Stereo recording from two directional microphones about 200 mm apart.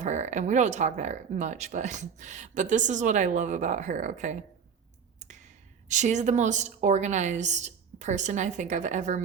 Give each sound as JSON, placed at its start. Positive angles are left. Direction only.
{"t": 0.0, "sound": "speech", "side_deg": -35}
{"t": 5.9, "sound": "speech", "side_deg": -35}